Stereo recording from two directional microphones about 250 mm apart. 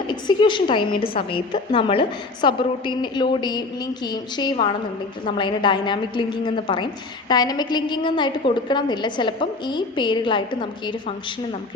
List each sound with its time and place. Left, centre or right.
0.1 s a woman's voice: centre